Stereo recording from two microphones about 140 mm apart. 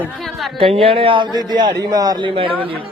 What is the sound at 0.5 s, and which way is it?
A man's voice, 40° right (ahead or behind).